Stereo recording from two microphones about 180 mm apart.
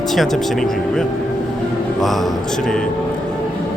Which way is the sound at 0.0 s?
Centre (ahead or behind).